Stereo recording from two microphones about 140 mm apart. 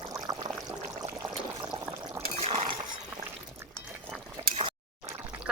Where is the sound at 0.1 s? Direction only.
30° right (ahead or behind).